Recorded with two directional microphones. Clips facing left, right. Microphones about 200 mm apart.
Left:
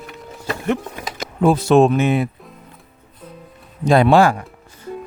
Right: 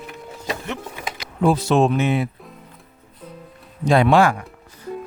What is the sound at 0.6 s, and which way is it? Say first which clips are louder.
Speech: left 8 dB; 50° left (ahead or behind).